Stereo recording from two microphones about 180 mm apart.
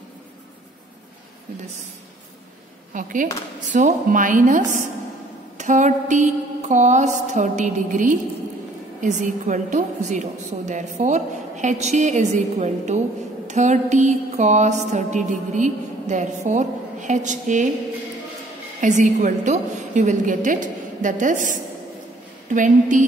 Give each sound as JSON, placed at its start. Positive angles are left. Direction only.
{"t": 2.9, "sound": "speech", "side_deg": -50}
{"t": 3.7, "sound": "music", "side_deg": -45}
{"t": 9.0, "sound": "a woman's voice", "side_deg": -45}
{"t": 13.5, "sound": "music", "side_deg": -40}
{"t": 18.8, "sound": "music", "side_deg": -45}